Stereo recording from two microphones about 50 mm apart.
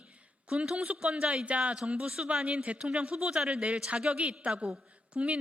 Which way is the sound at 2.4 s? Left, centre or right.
Right.